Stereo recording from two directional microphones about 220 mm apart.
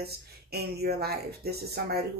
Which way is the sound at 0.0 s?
45° right (ahead or behind).